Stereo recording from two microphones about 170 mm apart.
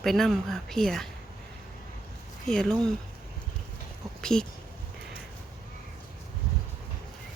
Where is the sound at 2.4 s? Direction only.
5° left (ahead or behind).